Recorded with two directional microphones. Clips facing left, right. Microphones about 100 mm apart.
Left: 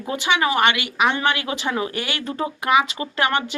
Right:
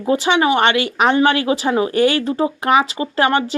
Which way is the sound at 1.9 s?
40° right (ahead or behind).